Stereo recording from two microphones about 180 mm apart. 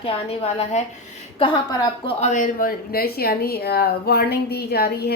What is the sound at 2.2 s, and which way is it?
Speech, 45° left (ahead or behind).